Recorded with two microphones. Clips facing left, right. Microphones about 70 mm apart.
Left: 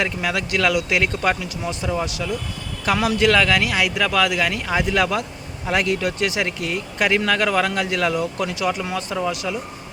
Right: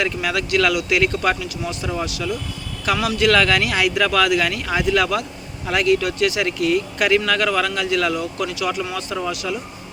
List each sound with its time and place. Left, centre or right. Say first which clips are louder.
0.0 s speech: right 1 dB; left
3.3 s speech: right 1 dB; centre; by 9.1 s left